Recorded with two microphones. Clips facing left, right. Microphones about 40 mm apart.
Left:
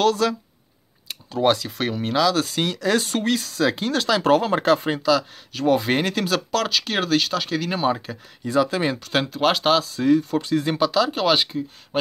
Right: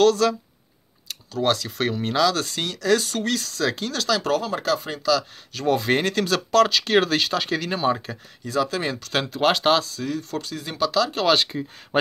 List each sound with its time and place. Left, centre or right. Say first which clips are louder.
0.0 s speech: right 2 dB; centre
4.2 s speech: left 6 dB; left
5.5 s speech: left 1 dB; centre
8.5 s speech: left 3 dB; centre
9.9 s speech: left 9 dB; left
10.5 s speech: left 11 dB; left
10.9 s speech: right 3 dB; centre
11.9 s speech: right 3 dB; right